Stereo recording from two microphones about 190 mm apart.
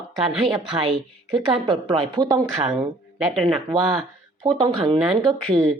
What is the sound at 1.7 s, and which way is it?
Speech, 25° right (ahead or behind).